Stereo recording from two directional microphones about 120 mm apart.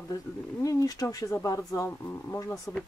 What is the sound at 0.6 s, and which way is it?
Speech, 30° left (ahead or behind).